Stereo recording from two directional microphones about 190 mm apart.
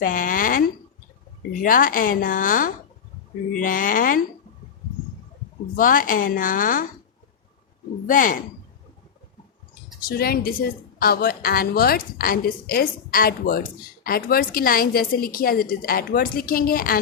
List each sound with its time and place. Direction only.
0.0 s speech: 45° left (ahead or behind)
1.6 s a woman's voice: 45° left (ahead or behind)
5.7 s a woman's voice: 45° left (ahead or behind)
8.0 s a woman's voice: 45° left (ahead or behind)
10.1 s a woman's voice: 50° left (ahead or behind)